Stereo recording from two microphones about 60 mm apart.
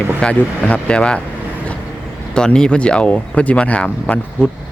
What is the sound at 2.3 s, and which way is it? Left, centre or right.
Speech, centre.